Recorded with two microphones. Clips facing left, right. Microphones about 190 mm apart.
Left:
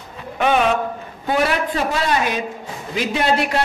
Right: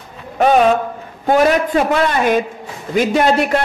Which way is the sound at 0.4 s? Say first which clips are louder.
Right 5 dB; 40° right (ahead or behind).